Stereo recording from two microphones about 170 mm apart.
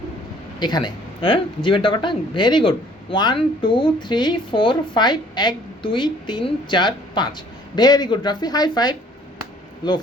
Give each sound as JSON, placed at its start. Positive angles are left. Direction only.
{"t": 0.6, "sound": "speech", "side_deg": 25}